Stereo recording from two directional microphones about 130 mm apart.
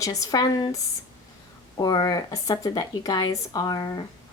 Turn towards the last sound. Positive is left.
turn(degrees=30)  # may be behind; listen again after turning